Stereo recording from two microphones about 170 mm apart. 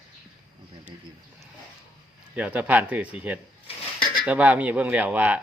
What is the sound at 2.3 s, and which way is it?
Speech, 10° right (ahead or behind).